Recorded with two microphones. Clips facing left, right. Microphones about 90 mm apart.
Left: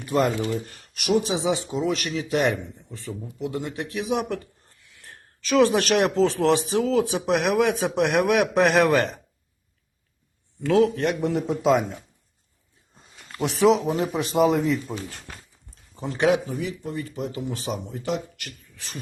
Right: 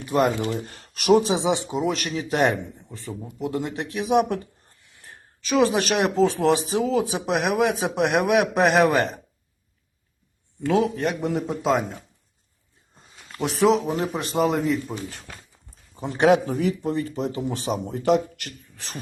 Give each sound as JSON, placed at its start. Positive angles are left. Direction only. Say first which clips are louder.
{"t": 0.1, "sound": "speech", "louder": "right 1 dB", "side_deg": -15}
{"t": 0.7, "sound": "speech", "louder": "right 8 dB", "side_deg": -40}
{"t": 1.4, "sound": "speech", "louder": "right 1 dB", "side_deg": -20}
{"t": 2.0, "sound": "speech", "louder": "right 1 dB", "side_deg": -50}
{"t": 3.5, "sound": "speech", "louder": "right 3 dB", "side_deg": -45}
{"t": 4.0, "sound": "speech", "louder": "right 6 dB", "side_deg": -60}
{"t": 5.0, "sound": "a man's voice", "louder": "left 1 dB", "side_deg": 0}
{"t": 10.7, "sound": "a man's voice", "louder": "left 2 dB", "side_deg": -10}
{"t": 13.1, "sound": "a man's voice", "louder": "right 1 dB", "side_deg": 0}
{"t": 16.1, "sound": "speech", "louder": "right 3 dB", "side_deg": -50}
{"t": 16.8, "sound": "speech", "louder": "right 5 dB", "side_deg": -35}